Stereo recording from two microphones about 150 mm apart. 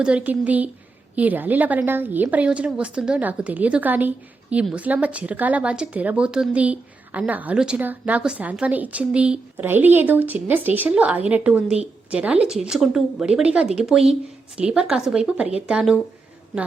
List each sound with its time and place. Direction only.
0.0 s a woman's voice: 5° right (ahead or behind)